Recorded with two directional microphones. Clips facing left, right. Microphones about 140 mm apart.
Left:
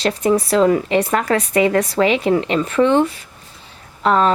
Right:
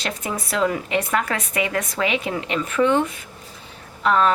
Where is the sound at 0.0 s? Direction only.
35° left (ahead or behind).